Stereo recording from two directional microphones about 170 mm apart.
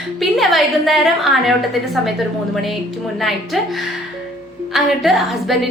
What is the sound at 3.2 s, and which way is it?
A woman's voice, centre (ahead or behind).